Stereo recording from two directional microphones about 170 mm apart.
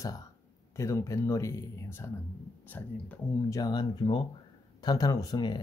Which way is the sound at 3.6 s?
25° left (ahead or behind).